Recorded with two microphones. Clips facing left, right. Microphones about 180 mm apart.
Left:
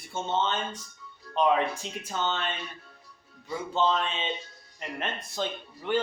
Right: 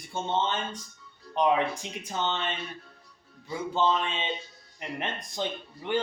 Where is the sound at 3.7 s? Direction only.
15° right (ahead or behind).